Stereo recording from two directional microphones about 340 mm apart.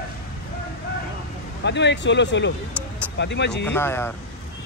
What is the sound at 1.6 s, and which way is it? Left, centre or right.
Speech, left.